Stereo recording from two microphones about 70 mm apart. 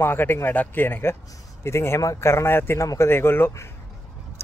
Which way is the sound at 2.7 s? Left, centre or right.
Left.